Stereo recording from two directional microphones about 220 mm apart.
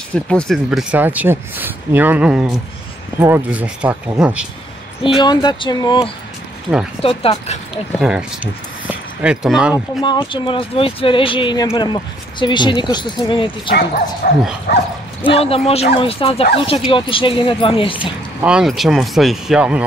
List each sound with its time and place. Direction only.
0.1 s speech: 5° left (ahead or behind)
5.2 s speech: 20° left (ahead or behind)
8.0 s speech: 5° right (ahead or behind)
10.0 s speech: 20° left (ahead or behind)
13.7 s speech: 45° left (ahead or behind)
15.2 s speech: 25° left (ahead or behind)
18.4 s speech: 5° right (ahead or behind)